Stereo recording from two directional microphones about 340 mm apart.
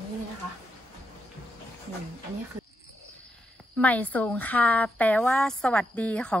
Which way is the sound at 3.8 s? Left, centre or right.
Centre.